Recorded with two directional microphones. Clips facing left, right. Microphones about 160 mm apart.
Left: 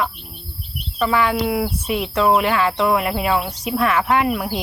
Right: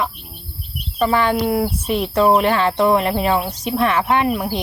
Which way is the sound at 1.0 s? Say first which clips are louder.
Right 2 dB; 35° right (ahead or behind).